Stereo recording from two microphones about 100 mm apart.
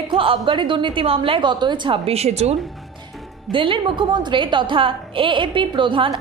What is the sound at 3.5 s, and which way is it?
A woman's voice, 55° right (ahead or behind).